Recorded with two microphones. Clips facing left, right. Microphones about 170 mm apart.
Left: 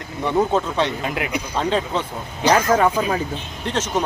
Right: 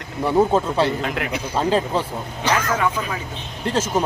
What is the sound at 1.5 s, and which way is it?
Speech, 5° right (ahead or behind).